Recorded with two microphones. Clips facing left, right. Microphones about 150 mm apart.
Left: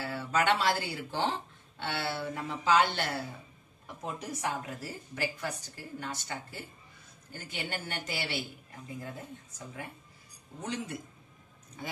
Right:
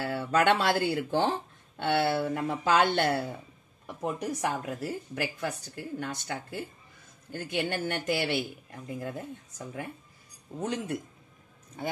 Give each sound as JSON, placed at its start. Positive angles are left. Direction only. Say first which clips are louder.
{"t": 0.0, "sound": "a woman's voice", "louder": "right 4 dB", "side_deg": -55}